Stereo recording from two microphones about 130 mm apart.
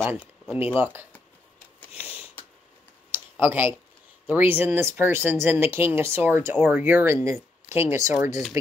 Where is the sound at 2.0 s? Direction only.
50° left (ahead or behind).